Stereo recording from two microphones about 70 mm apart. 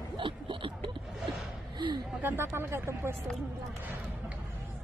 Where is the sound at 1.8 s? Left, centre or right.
Right.